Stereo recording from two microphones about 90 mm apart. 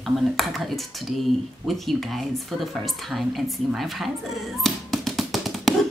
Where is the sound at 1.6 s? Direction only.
Centre (ahead or behind).